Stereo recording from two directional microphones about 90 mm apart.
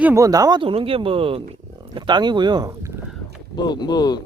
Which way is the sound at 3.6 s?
50° left (ahead or behind).